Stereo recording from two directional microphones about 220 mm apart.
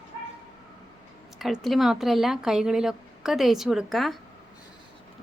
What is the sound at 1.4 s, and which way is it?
Speech, centre (ahead or behind).